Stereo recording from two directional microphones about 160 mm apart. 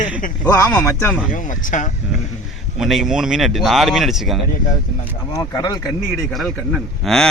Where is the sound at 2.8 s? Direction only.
Centre (ahead or behind).